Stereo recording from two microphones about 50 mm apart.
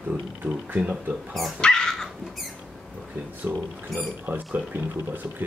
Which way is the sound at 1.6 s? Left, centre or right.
Centre.